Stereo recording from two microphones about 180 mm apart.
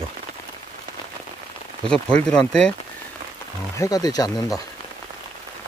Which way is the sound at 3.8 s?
20° left (ahead or behind).